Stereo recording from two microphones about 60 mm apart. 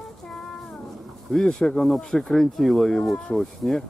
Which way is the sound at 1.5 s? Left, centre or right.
Centre.